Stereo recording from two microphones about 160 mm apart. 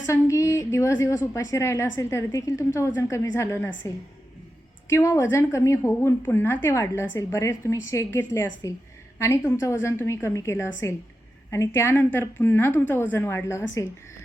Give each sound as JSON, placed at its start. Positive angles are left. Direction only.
{"t": 0.0, "sound": "a woman's voice", "side_deg": 20}